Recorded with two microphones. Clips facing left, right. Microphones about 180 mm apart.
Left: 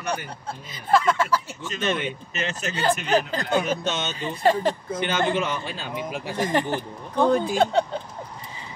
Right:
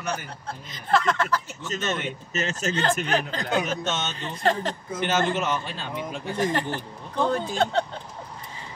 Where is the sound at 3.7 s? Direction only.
10° left (ahead or behind).